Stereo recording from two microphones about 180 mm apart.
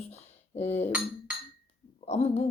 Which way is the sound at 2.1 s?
35° left (ahead or behind).